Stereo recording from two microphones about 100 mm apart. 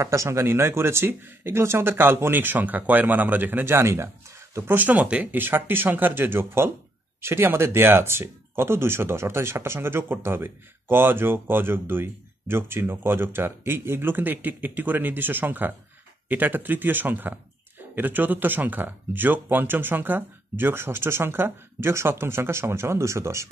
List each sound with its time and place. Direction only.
0.0 s speech: 30° right (ahead or behind)